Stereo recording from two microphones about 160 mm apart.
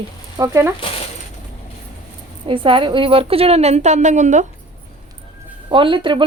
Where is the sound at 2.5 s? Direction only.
35° right (ahead or behind); by 4.4 s 50° right (ahead or behind).